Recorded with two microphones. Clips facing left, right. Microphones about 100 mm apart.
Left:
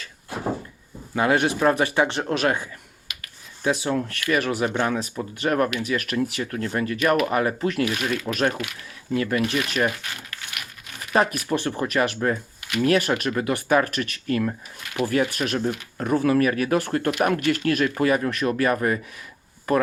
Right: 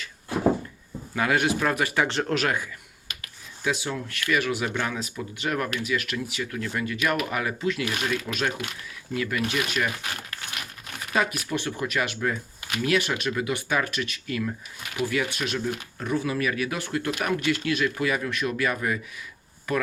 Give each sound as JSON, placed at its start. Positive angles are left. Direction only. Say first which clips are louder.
{"t": 1.1, "sound": "speech", "louder": "left 3 dB", "side_deg": 30}
{"t": 3.1, "sound": "a sound", "louder": "even", "side_deg": -35}
{"t": 3.6, "sound": "speech", "louder": "left 5 dB", "side_deg": 35}
{"t": 11.1, "sound": "speech", "louder": "left 5 dB", "side_deg": 45}